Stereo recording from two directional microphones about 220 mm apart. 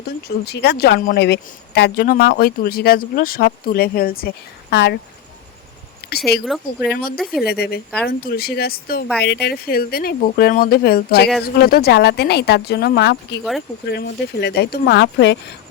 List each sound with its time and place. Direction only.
0.4 s speech: 50° left (ahead or behind)
4.7 s speech: 55° left (ahead or behind)
6.1 s speech: 45° left (ahead or behind)
6.4 s speech: 5° right (ahead or behind)
7.4 s speech: 45° left (ahead or behind)